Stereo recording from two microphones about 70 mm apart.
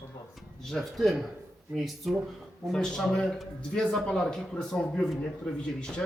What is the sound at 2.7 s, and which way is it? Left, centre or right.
Speech, centre.